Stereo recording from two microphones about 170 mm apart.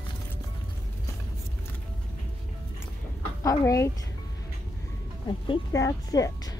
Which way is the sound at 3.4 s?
20° left (ahead or behind).